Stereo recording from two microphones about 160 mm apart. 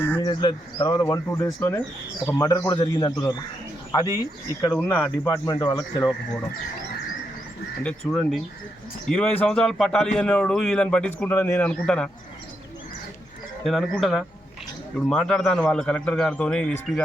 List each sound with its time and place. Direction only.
0.0 s bird: 15° left (ahead or behind)
0.3 s speech: 30° left (ahead or behind)
4.7 s speech: 10° left (ahead or behind)
5.5 s speech: 25° left (ahead or behind)
7.9 s a man's voice: centre (ahead or behind)
13.7 s a man's voice: centre (ahead or behind)